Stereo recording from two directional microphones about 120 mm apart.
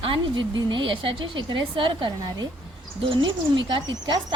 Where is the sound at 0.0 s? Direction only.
45° right (ahead or behind).